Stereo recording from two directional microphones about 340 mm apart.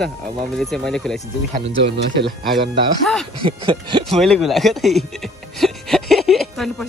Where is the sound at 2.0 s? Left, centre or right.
Right.